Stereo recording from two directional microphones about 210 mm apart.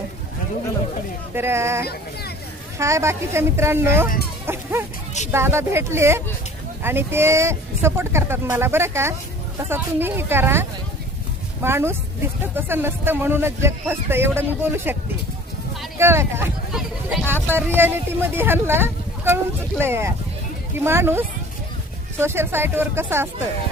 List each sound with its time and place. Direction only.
1.4 s speech: 10° right (ahead or behind)
4.4 s a sound: 10° right (ahead or behind)
5.3 s speech: 10° right (ahead or behind)
16.0 s speech: 10° right (ahead or behind)